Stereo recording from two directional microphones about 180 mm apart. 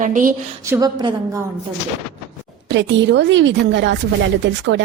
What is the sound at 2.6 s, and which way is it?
A woman's voice, 85° right.